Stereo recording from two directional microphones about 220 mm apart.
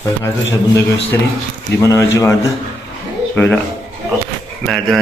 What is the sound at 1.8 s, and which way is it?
A man's voice, 15° left (ahead or behind).